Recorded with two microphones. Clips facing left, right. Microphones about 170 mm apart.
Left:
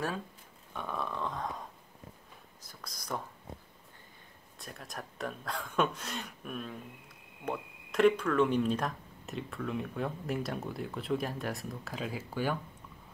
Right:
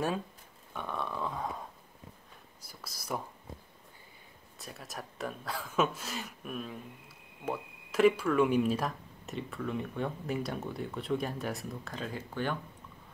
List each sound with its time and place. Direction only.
0.7 s a sound: centre (ahead or behind)
2.6 s speech: 5° right (ahead or behind)
4.6 s speech: 5° right (ahead or behind)